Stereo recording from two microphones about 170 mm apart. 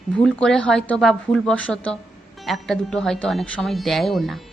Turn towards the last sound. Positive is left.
turn(degrees=0)  # may be behind; listen again after turning